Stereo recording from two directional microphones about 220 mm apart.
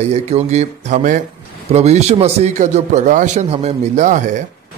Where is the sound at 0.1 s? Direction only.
30° right (ahead or behind).